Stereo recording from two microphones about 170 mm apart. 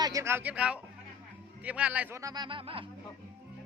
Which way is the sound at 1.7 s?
5° right (ahead or behind).